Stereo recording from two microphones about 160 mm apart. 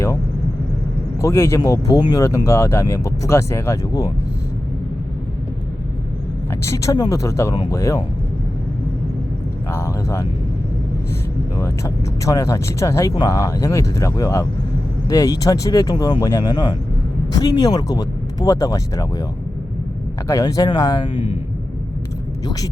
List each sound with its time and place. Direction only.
1.2 s speech: 15° left (ahead or behind)
6.5 s speech: 15° left (ahead or behind)
7.5 s speech: 30° left (ahead or behind)
9.7 s speech: 15° left (ahead or behind)
11.6 s speech: 20° left (ahead or behind)
20.2 s speech: 20° left (ahead or behind)